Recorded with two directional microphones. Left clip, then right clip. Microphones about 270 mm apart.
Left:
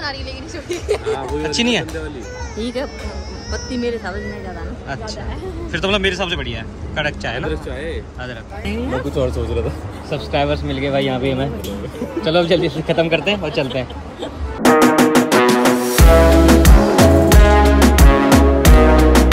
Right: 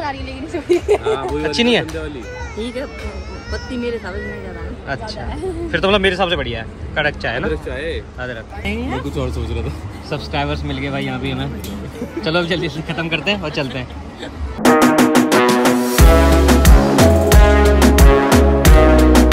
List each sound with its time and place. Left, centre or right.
0.0 s vehicle: right
1.4 s speech: centre
2.6 s speech: left
5.7 s a man's voice: centre
10.1 s a man's voice: centre
14.6 s music: centre